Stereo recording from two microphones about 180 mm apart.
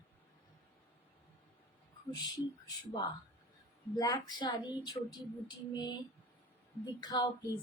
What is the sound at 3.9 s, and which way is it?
A woman's voice, 20° left (ahead or behind).